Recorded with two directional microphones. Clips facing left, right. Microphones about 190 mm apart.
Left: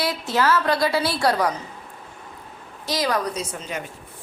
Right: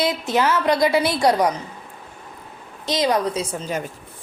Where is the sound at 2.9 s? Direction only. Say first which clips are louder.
Right 4 dB; 20° right (ahead or behind).